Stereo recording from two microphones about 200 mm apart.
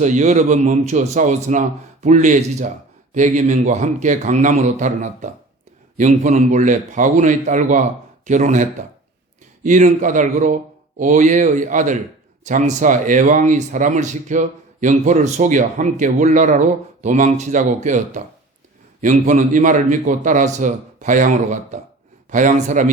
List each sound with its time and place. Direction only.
0.0 s speech: 35° right (ahead or behind)
9.6 s speech: 40° right (ahead or behind)